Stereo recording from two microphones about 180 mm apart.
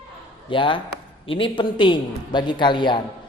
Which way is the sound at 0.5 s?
25° left (ahead or behind).